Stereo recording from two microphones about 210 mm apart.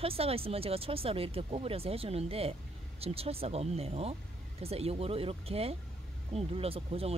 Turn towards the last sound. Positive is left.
turn(degrees=-25)  # may be behind; listen again after turning